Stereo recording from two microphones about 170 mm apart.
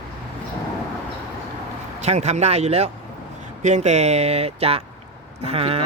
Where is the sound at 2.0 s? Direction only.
40° right (ahead or behind).